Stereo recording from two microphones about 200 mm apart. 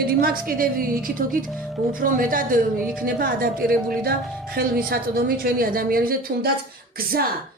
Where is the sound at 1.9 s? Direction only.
45° right (ahead or behind).